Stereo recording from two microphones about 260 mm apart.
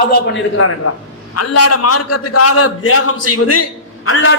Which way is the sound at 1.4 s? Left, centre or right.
Left.